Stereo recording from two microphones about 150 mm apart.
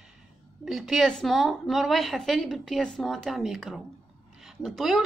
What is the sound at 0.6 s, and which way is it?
A woman's voice, centre (ahead or behind).